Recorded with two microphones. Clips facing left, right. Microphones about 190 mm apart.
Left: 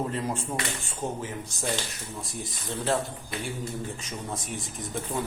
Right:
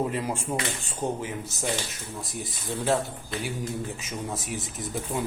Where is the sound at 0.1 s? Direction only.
15° right (ahead or behind).